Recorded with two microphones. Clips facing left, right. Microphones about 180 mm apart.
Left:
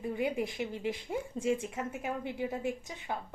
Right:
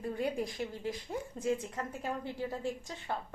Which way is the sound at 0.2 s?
20° left (ahead or behind).